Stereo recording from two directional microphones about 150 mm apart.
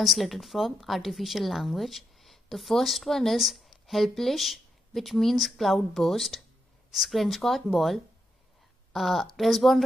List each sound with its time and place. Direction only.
0.0 s a woman's voice: centre (ahead or behind)